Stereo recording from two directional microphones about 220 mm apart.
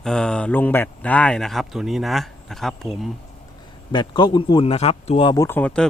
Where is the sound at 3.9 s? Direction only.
20° left (ahead or behind).